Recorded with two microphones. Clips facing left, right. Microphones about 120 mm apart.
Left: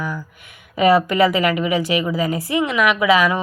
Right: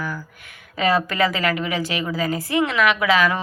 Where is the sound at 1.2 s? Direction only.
10° left (ahead or behind).